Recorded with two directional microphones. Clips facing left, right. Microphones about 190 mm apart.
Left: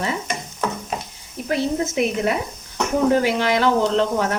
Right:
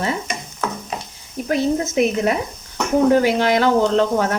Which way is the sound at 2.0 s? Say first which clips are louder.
Right 4 dB; 45° right (ahead or behind).